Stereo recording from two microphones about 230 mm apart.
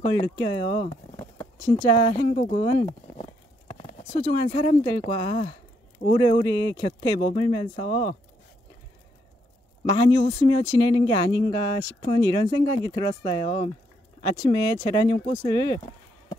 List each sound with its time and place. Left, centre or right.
0.0 s speech: centre
9.8 s speech: centre